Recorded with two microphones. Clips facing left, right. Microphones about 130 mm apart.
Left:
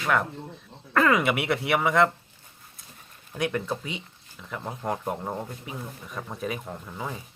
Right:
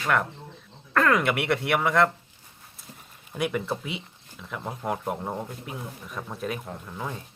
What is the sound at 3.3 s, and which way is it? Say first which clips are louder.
Speech: even; 5° right (ahead or behind).